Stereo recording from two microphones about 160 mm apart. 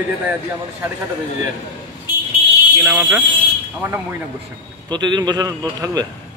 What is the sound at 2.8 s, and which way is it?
A man's voice, 20° right (ahead or behind).